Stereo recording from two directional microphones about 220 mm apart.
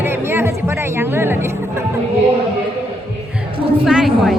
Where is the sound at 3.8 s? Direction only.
Centre (ahead or behind).